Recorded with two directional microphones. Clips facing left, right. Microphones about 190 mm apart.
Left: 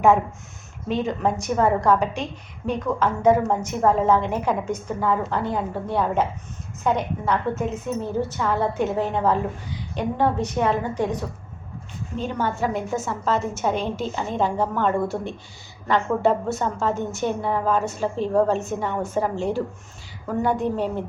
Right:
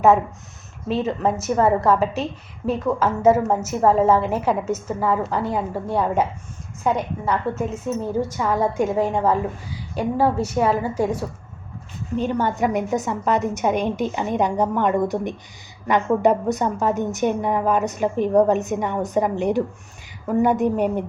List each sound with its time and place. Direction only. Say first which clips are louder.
0.9 s a woman's voice: right 2 dB; 5° right (ahead or behind)
12.4 s a woman's voice: even; 15° right (ahead or behind)